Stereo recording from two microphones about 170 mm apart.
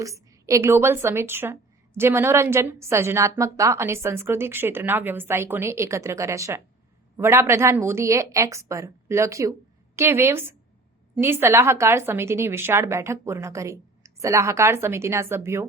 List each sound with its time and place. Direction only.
0.0 s a woman's voice: 20° right (ahead or behind)